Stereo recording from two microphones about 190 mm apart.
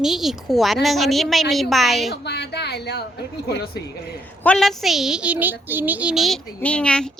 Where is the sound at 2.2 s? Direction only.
60° left (ahead or behind).